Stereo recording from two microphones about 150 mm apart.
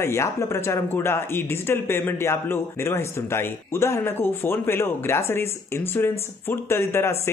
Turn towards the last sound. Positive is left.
turn(degrees=15)  # may be behind; listen again after turning